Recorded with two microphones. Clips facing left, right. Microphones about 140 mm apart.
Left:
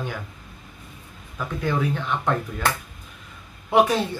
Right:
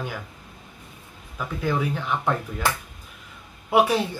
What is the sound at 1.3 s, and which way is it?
A woman's voice, 5° right (ahead or behind).